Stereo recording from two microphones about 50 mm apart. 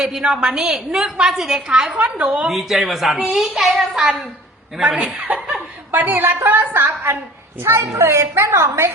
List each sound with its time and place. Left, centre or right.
0.0 s a woman's voice: centre
1.2 s a woman's voice: centre
2.0 s a woman's voice: centre
2.5 s a woman's voice: centre
4.8 s a woman's voice: centre
5.5 s speech: right
7.6 s a woman's voice: right